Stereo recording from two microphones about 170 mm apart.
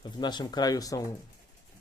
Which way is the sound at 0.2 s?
25° left (ahead or behind).